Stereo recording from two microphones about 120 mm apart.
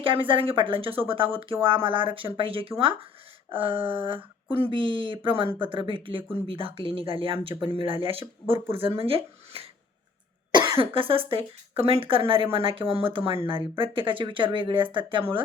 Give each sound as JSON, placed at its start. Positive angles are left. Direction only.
{"t": 0.0, "sound": "speech", "side_deg": -45}